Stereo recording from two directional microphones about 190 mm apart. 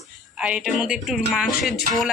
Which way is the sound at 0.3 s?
5° right (ahead or behind).